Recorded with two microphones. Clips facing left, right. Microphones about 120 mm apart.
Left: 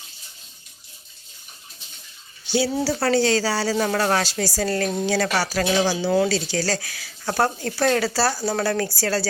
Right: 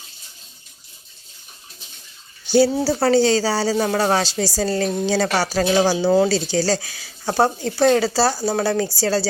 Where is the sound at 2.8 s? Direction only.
30° right (ahead or behind).